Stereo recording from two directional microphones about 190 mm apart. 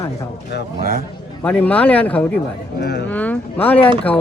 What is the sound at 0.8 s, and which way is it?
Speech, 50° right (ahead or behind).